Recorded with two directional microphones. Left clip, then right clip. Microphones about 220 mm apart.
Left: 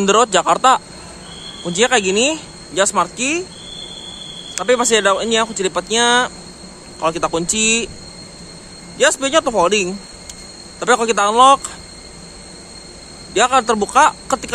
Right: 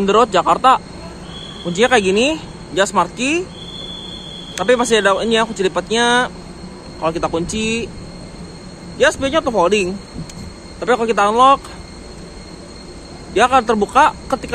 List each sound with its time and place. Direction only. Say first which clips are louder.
0.0 s speech: even; 15° left (ahead or behind)
4.6 s speech: right 1 dB; 10° left (ahead or behind)
8.9 s speech: even; 15° left (ahead or behind)
13.3 s speech: right 1 dB; 15° left (ahead or behind)